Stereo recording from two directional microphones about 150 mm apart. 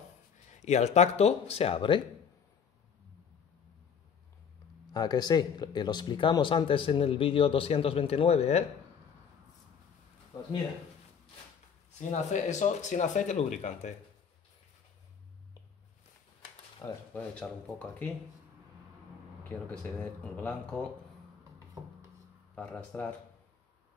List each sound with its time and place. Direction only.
0.5 s speech: 50° left (ahead or behind); by 2.0 s 35° left (ahead or behind)
4.9 s speech: 25° left (ahead or behind); by 8.6 s 45° left (ahead or behind)
12.0 s speech: 55° left (ahead or behind)
17.1 s speech: 10° left (ahead or behind)
19.7 s speech: 10° left (ahead or behind)
22.6 s speech: 10° left (ahead or behind)